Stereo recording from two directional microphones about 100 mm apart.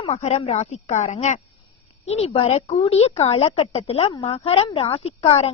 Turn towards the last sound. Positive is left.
turn(degrees=90)